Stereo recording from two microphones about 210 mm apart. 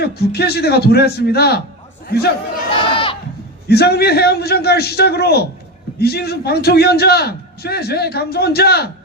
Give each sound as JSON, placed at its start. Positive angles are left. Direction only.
{"t": 0.0, "sound": "a man's voice", "side_deg": 50}
{"t": 2.8, "sound": "sheep", "side_deg": 25}
{"t": 3.7, "sound": "a man's voice", "side_deg": 50}